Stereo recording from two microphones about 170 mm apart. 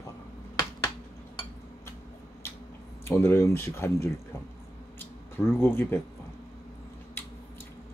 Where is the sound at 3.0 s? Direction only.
15° left (ahead or behind).